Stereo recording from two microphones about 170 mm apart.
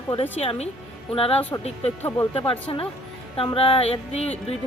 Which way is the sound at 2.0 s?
15° left (ahead or behind).